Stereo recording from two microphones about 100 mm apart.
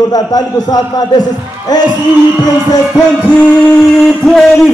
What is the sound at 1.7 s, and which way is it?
Music, 40° left (ahead or behind).